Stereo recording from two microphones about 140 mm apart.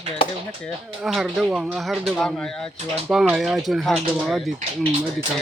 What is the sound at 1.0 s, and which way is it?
Speech, centre (ahead or behind).